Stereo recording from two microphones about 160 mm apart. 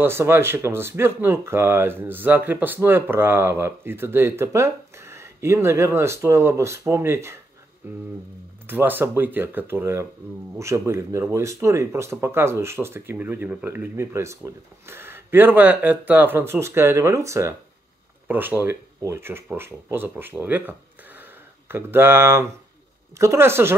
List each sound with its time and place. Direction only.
0.0 s speech: 15° right (ahead or behind)